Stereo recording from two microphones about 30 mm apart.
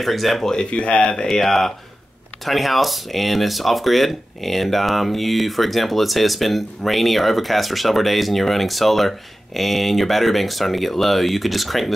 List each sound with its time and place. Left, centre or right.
0.0 s speech: centre
0.7 s speech: left
1.4 s speech: centre